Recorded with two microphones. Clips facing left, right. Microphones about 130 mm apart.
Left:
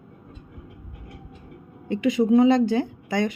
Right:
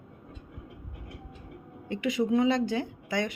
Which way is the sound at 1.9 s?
30° left (ahead or behind).